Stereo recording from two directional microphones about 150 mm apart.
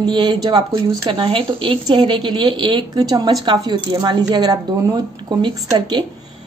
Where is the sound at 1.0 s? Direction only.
35° right (ahead or behind).